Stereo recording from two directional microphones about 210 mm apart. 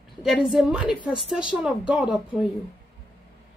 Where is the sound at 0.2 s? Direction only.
Centre (ahead or behind).